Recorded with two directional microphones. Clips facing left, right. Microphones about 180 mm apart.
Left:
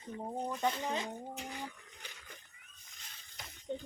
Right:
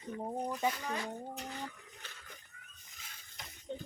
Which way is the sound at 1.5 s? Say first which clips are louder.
Right 1 dB; 15° left (ahead or behind).